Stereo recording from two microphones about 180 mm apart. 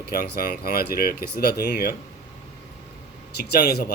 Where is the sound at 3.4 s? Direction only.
60° left (ahead or behind).